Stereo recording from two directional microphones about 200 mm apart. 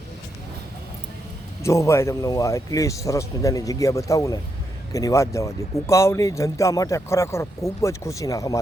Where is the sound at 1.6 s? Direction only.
15° left (ahead or behind).